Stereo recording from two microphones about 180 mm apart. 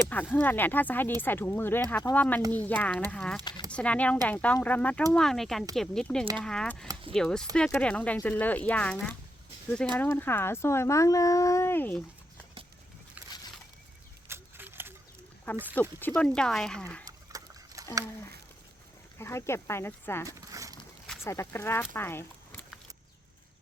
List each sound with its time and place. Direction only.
0.1 s speech: 10° left (ahead or behind)
14.3 s a sound: 15° right (ahead or behind)
15.7 s speech: 10° left (ahead or behind)
17.1 s horse: 20° right (ahead or behind)
19.2 s speech: 15° left (ahead or behind)
20.2 s a sound: 20° right (ahead or behind)
21.2 s speech: 15° left (ahead or behind)